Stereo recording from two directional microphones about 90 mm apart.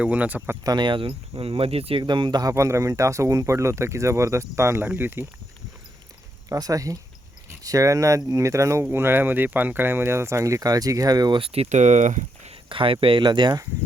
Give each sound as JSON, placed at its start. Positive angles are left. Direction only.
{"t": 0.0, "sound": "speech", "side_deg": -15}
{"t": 0.6, "sound": "speech", "side_deg": -55}
{"t": 2.0, "sound": "speech", "side_deg": -55}
{"t": 2.5, "sound": "speech", "side_deg": -35}
{"t": 6.5, "sound": "speech", "side_deg": -40}
{"t": 11.3, "sound": "speech", "side_deg": -90}
{"t": 12.6, "sound": "speech", "side_deg": -75}